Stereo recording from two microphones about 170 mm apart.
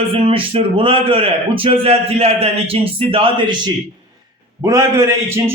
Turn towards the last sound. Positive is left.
turn(degrees=-20)  # may be behind; listen again after turning